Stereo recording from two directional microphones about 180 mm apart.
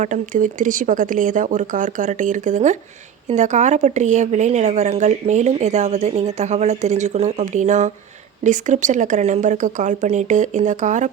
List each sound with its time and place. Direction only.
0.0 s a woman's voice: 45° right (ahead or behind)